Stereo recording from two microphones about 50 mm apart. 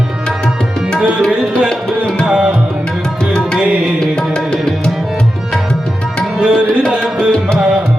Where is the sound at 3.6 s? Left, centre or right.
Right.